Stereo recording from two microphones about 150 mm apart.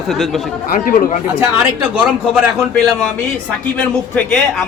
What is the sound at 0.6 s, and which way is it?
Speech, 65° left (ahead or behind).